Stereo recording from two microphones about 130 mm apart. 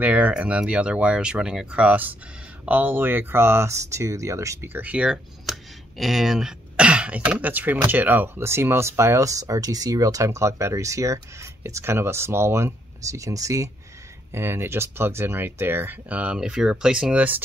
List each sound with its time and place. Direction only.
0.0 s speech: 10° right (ahead or behind)